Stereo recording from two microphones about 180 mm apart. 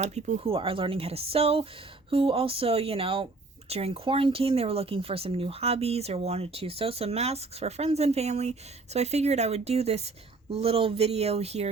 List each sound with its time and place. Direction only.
0.0 s speech: 40° right (ahead or behind)